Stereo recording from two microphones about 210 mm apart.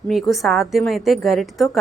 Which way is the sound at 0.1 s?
Centre (ahead or behind).